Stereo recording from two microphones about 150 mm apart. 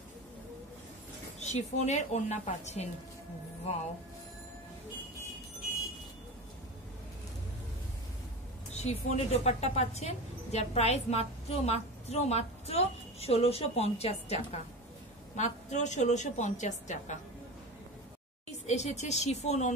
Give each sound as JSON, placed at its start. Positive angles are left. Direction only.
{"t": 1.4, "sound": "a woman's voice", "side_deg": 50}
{"t": 8.7, "sound": "a woman's voice", "side_deg": 45}
{"t": 18.7, "sound": "a woman's voice", "side_deg": 50}